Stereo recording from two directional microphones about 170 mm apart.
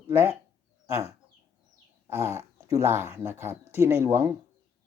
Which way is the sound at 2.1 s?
15° right (ahead or behind).